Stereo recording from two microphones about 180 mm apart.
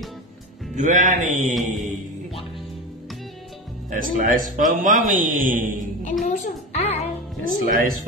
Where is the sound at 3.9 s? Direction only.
50° right (ahead or behind).